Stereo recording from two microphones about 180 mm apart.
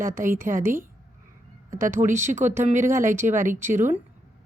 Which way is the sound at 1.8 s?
50° right (ahead or behind).